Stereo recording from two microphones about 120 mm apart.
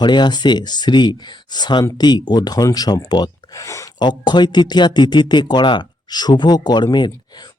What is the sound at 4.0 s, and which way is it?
Speech, 40° left (ahead or behind).